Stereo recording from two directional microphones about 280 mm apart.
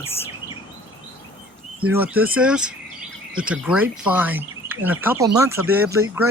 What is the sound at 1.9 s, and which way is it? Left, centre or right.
Speech, centre.